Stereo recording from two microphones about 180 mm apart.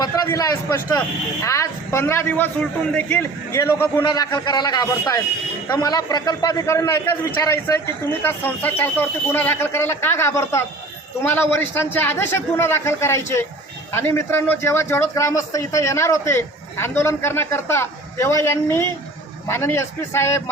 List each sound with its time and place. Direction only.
0.0 s a man's voice: 20° left (ahead or behind)